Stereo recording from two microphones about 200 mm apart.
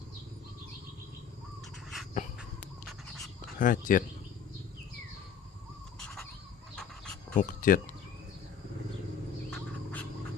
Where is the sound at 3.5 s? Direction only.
40° left (ahead or behind).